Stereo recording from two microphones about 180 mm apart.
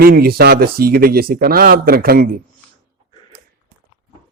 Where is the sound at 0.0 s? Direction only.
55° right (ahead or behind).